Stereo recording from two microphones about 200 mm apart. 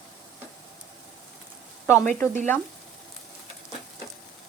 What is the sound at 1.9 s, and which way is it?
Speech, 10° left (ahead or behind).